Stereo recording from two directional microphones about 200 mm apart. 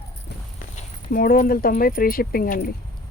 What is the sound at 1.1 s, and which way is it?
Speech, 45° left (ahead or behind).